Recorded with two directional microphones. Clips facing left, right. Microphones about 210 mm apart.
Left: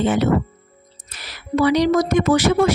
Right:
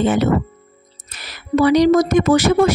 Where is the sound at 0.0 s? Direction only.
50° right (ahead or behind).